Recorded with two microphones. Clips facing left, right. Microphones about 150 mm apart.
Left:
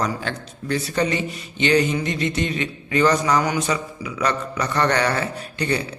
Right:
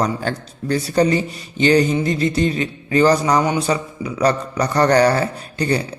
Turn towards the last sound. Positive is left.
turn(degrees=-35)  # may be behind; listen again after turning